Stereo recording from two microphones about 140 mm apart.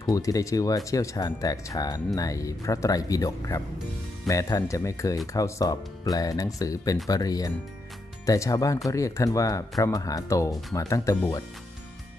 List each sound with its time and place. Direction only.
0.0 s speech: 25° left (ahead or behind)